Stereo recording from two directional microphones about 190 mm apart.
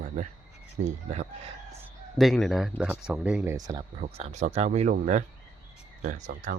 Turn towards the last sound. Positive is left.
turn(degrees=-40)  # may be behind; listen again after turning